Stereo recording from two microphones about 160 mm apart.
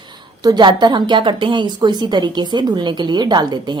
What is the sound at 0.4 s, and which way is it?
A woman's voice, 30° right (ahead or behind).